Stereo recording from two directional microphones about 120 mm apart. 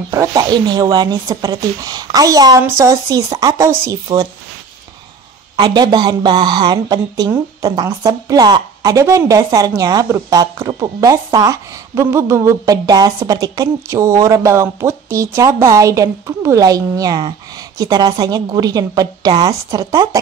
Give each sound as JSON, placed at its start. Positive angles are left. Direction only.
{"t": 0.1, "sound": "speech", "side_deg": -30}
{"t": 5.6, "sound": "speech", "side_deg": -40}